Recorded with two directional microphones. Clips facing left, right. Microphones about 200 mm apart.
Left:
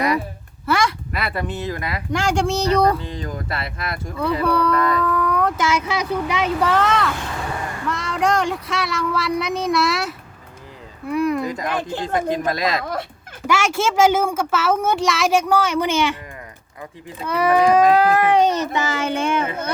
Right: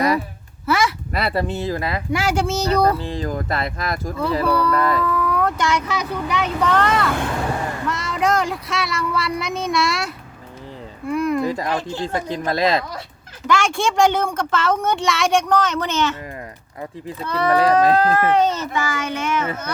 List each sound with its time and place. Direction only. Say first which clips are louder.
0.6 s a sound: even; centre (ahead or behind)
1.1 s speech: right 4 dB; 30° right (ahead or behind)
2.1 s speech: left 2 dB; 5° right (ahead or behind)
3.0 s speech: right 4 dB; 30° right (ahead or behind)
4.2 s speech: left 1 dB; centre (ahead or behind)
11.4 s speech: right 3 dB; 30° right (ahead or behind)
11.8 s speech: left 1 dB; 55° left (ahead or behind)
12.0 s speech: left 5 dB; 30° right (ahead or behind)
12.8 s fowl: left 6 dB; 55° left (ahead or behind)
13.5 s a woman's voice: even; 5° left (ahead or behind)
17.2 s a woman's voice: left 1 dB; 10° left (ahead or behind); by 19.7 s 30° left (ahead or behind)